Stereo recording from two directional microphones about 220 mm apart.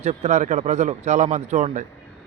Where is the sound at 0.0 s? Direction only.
30° right (ahead or behind).